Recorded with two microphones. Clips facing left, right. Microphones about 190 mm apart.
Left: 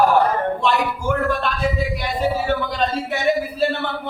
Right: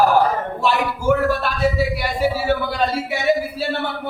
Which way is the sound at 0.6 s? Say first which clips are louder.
Even; 5° right (ahead or behind).